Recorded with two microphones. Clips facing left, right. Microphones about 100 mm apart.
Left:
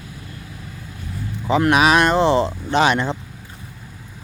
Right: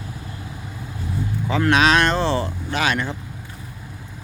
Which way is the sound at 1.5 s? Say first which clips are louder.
Left 2 dB; 15° left (ahead or behind).